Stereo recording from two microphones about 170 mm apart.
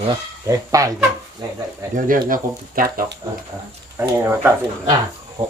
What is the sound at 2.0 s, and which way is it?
Speech, 55° right (ahead or behind).